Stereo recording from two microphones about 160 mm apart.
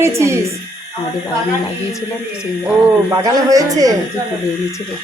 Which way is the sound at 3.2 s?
20° right (ahead or behind).